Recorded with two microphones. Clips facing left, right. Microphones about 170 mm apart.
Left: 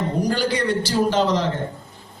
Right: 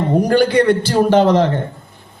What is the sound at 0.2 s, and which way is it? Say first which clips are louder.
Speech: right 10 dB; 60° right (ahead or behind).